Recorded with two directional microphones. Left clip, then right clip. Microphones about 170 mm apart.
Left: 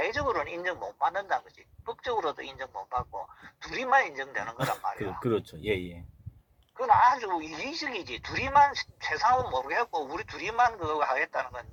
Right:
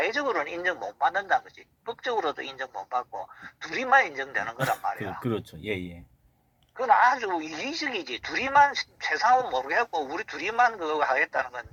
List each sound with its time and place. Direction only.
0.0 s speech: 40° right (ahead or behind)
5.2 s speech: centre (ahead or behind)
6.7 s speech: 40° right (ahead or behind)